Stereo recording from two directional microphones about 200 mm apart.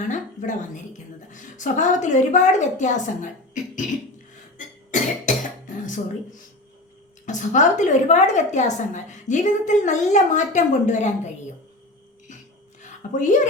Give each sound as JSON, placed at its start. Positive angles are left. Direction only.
{"t": 0.1, "sound": "a woman's voice", "side_deg": 40}
{"t": 4.5, "sound": "cough", "side_deg": 40}
{"t": 7.3, "sound": "a woman's voice", "side_deg": 40}
{"t": 12.8, "sound": "a sound", "side_deg": 40}